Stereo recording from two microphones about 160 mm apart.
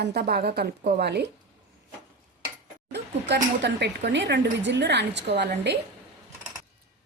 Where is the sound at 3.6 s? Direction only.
90° right.